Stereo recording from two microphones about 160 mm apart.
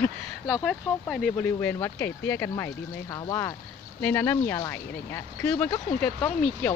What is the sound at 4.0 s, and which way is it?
Speech, 10° left (ahead or behind).